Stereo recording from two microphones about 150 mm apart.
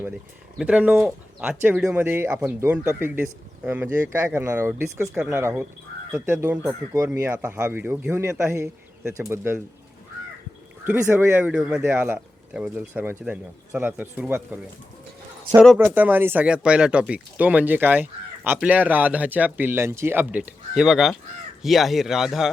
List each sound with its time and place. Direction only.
0.6 s speech: 10° right (ahead or behind)
10.8 s speech: 15° right (ahead or behind)
15.5 s speech: 55° right (ahead or behind)
15.8 s speech: 10° right (ahead or behind)